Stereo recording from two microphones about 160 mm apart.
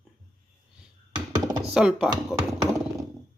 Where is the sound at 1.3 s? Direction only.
25° right (ahead or behind).